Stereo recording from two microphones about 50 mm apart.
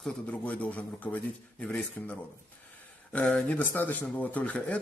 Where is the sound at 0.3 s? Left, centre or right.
Left.